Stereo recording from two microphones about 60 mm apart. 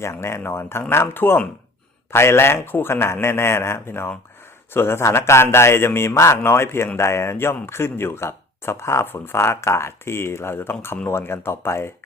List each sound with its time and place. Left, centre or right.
0.0 s speech: left